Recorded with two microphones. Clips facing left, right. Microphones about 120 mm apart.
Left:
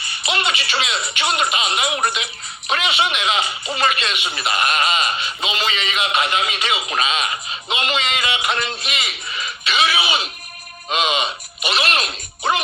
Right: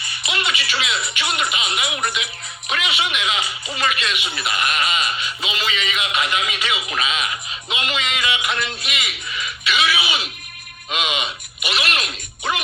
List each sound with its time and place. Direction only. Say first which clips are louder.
0.3 s a man's voice: left 3 dB; 30° left (ahead or behind)